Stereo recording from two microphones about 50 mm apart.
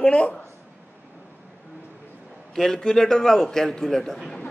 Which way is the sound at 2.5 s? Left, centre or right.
Centre.